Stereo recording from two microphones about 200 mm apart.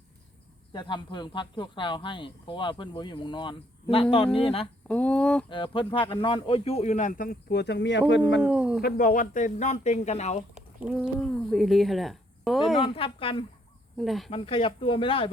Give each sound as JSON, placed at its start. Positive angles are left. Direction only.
{"t": 0.7, "sound": "speech", "side_deg": 20}
{"t": 4.9, "sound": "speech", "side_deg": 5}
{"t": 5.5, "sound": "speech", "side_deg": 25}
{"t": 8.4, "sound": "speech", "side_deg": -5}
{"t": 8.8, "sound": "speech", "side_deg": 45}
{"t": 10.8, "sound": "speech", "side_deg": -5}
{"t": 12.8, "sound": "speech", "side_deg": 25}
{"t": 14.0, "sound": "speech", "side_deg": 0}
{"t": 14.3, "sound": "speech", "side_deg": 25}